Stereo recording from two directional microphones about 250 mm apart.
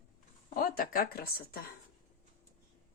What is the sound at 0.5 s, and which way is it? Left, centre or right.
Speech, left.